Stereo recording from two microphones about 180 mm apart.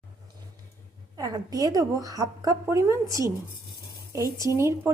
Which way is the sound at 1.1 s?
20° right (ahead or behind).